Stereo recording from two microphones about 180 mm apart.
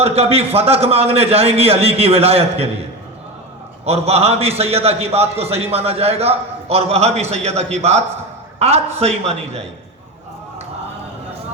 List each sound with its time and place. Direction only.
0.0 s a man's voice: 35° right (ahead or behind)
3.8 s a man's voice: 35° right (ahead or behind)